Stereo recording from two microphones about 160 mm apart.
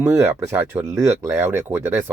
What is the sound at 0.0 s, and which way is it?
Speech, 15° right (ahead or behind).